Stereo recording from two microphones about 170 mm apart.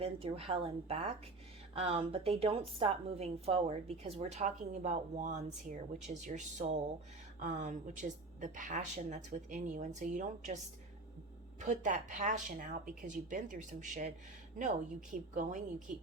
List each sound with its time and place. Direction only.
0.0 s a woman's voice: 35° right (ahead or behind)
11.6 s speech: 45° right (ahead or behind)